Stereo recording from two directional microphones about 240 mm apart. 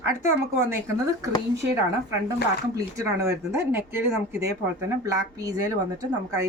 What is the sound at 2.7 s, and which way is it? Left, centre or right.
Speech, centre.